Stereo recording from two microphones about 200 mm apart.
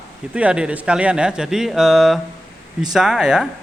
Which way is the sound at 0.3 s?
5° right (ahead or behind).